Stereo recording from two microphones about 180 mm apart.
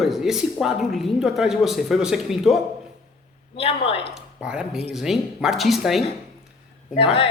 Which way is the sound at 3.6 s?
30° left (ahead or behind).